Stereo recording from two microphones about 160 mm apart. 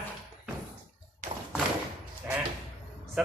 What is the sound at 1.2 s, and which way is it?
Thump, 45° right (ahead or behind).